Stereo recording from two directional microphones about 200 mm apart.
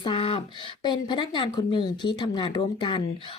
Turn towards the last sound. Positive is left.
turn(degrees=25)  # may be behind; listen again after turning